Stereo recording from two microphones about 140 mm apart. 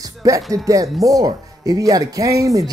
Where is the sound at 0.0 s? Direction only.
25° right (ahead or behind).